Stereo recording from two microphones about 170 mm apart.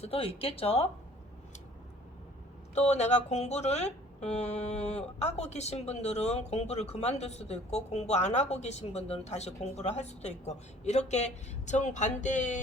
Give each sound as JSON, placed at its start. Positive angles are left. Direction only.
{"t": 0.0, "sound": "speech", "side_deg": 35}
{"t": 2.7, "sound": "speech", "side_deg": 40}